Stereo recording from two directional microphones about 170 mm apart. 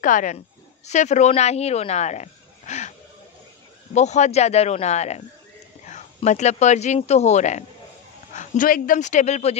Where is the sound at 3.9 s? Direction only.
40° left (ahead or behind).